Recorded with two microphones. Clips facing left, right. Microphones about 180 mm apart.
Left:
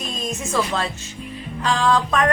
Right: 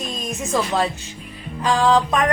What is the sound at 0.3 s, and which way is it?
Speech, 15° right (ahead or behind).